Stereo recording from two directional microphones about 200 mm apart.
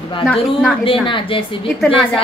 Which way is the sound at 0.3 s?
Centre (ahead or behind).